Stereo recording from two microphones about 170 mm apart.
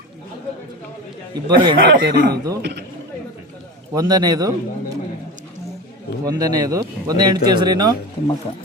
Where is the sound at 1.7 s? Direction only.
55° right (ahead or behind).